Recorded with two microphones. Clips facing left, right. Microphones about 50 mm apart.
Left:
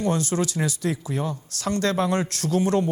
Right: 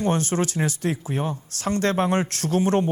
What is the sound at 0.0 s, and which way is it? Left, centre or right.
Speech, right.